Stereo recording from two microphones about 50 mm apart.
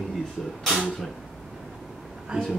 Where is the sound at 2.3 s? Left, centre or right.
Centre.